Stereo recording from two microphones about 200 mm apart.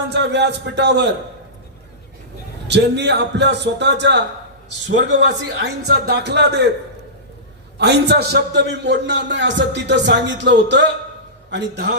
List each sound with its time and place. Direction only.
0.1 s a man's voice: 60° right (ahead or behind)
2.6 s a man's voice: 60° right (ahead or behind)
7.8 s a man's voice: 60° right (ahead or behind)